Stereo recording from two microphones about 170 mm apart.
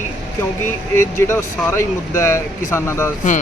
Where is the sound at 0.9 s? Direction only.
15° left (ahead or behind).